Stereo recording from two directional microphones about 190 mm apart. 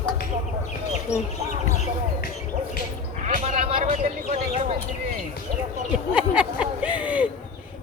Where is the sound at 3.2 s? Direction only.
35° right (ahead or behind).